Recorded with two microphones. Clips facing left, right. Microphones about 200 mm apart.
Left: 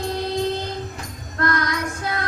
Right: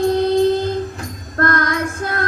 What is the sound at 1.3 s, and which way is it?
Child singing, 50° right (ahead or behind).